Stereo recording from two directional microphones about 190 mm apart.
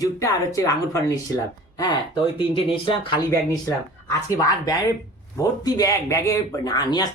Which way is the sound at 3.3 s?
15° left (ahead or behind).